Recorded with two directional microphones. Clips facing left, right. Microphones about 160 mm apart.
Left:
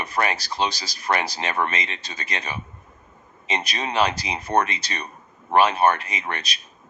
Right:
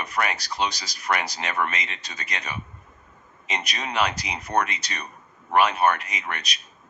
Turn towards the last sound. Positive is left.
turn(degrees=30)  # may be behind; listen again after turning